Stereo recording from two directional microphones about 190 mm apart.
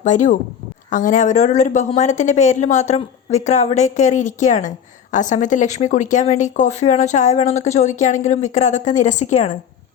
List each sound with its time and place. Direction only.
0.0 s speech: 40° left (ahead or behind)